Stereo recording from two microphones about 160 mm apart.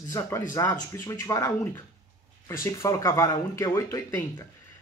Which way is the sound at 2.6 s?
20° left (ahead or behind).